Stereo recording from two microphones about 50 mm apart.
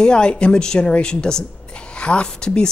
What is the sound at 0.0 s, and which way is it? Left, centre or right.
A woman's voice, centre.